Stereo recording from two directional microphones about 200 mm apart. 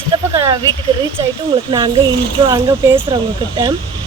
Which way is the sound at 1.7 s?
20° right (ahead or behind).